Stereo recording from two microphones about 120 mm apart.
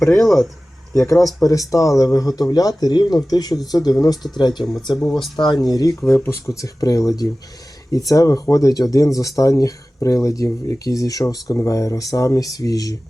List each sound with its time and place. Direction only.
0.0 s speech: 5° left (ahead or behind)
1.4 s speech: 30° left (ahead or behind)
4.9 s speech: 5° left (ahead or behind)
5.4 s speech: 35° left (ahead or behind)
6.1 s speech: 20° left (ahead or behind)